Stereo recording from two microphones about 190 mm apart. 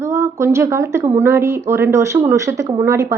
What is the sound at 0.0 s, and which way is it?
A woman's voice, 15° right (ahead or behind).